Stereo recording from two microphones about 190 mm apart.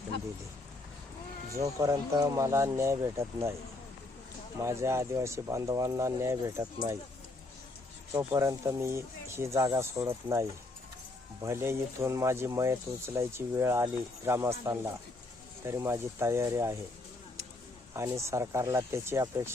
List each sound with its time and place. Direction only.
1.5 s speech: 15° right (ahead or behind)
4.6 s speech: 15° right (ahead or behind)
8.1 s speech: 15° right (ahead or behind)
11.4 s speech: 15° right (ahead or behind)
17.9 s speech: 15° right (ahead or behind)